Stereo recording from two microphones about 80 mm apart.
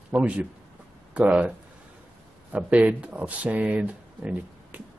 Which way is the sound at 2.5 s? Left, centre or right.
Centre.